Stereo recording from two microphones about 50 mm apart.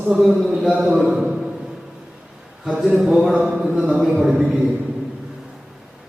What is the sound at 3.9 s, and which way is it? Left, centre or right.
Speech, centre.